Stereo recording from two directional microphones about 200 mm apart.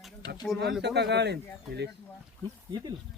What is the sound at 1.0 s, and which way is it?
Speech, 55° right (ahead or behind).